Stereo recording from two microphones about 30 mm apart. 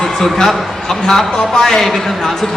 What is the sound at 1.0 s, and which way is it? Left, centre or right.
A man's voice, centre.